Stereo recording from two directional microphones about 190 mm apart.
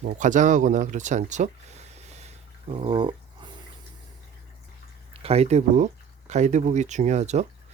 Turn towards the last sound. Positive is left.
turn(degrees=-35)  # may be behind; listen again after turning